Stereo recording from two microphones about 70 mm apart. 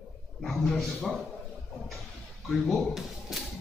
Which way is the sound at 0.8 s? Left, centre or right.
Centre.